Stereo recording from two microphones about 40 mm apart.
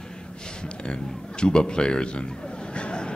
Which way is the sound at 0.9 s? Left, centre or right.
Left.